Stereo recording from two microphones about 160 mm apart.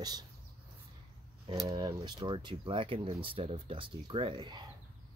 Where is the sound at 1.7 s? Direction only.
25° right (ahead or behind).